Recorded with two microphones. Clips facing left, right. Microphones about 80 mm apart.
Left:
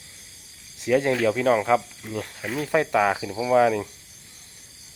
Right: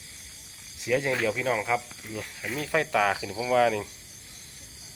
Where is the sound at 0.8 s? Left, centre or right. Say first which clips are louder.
Left 5 dB; left.